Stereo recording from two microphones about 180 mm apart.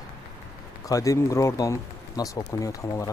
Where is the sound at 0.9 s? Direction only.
15° left (ahead or behind).